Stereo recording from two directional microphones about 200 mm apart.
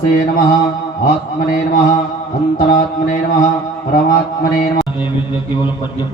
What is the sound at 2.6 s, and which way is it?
Speech, 40° left (ahead or behind).